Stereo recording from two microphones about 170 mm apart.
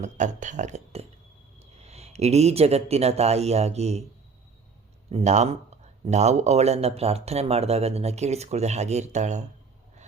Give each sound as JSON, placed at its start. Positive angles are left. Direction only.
{"t": 0.0, "sound": "speech", "side_deg": -45}
{"t": 5.1, "sound": "speech", "side_deg": -45}